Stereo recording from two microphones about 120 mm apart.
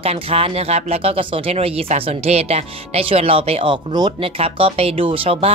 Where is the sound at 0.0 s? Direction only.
55° right (ahead or behind).